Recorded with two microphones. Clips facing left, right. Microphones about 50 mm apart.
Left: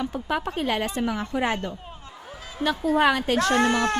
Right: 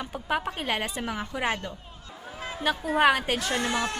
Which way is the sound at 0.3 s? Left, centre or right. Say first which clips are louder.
Left 1 dB; centre.